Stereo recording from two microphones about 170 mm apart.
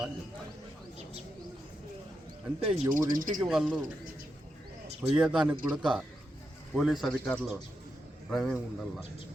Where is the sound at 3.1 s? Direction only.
50° right (ahead or behind).